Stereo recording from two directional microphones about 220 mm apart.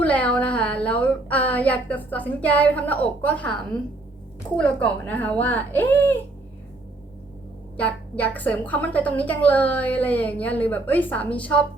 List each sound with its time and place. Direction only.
0.0 s a woman's voice: 5° left (ahead or behind)
4.5 s a woman's voice: 5° left (ahead or behind)
7.8 s a woman's voice: 5° left (ahead or behind)